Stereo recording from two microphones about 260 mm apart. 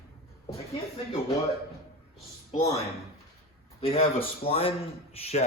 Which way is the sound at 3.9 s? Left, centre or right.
Left.